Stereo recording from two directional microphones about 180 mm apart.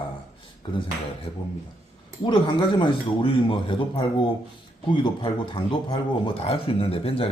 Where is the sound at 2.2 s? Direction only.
25° left (ahead or behind).